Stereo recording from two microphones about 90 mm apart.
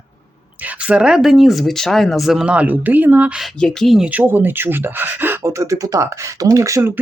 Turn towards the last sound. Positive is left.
turn(degrees=-35)  # may be behind; listen again after turning